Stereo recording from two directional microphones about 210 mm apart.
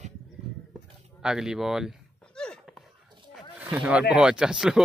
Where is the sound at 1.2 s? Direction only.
5° right (ahead or behind).